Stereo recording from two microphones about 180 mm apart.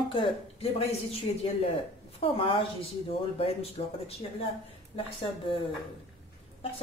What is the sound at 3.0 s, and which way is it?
Speech, 35° left (ahead or behind).